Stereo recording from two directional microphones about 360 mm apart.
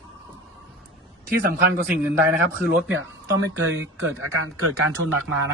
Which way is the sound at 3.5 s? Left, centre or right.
Right.